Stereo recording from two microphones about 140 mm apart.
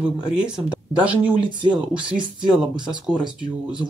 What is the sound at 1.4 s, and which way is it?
Speech, 35° right (ahead or behind).